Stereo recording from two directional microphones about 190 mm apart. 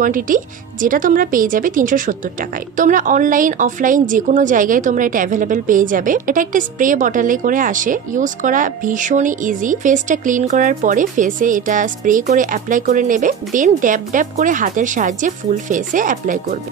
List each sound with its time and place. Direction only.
0.0 s a woman's voice: 45° right (ahead or behind)